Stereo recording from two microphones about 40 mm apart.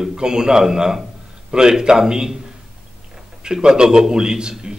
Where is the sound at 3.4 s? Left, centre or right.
Centre.